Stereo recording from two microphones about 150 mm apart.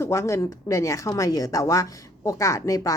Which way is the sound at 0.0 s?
20° left (ahead or behind).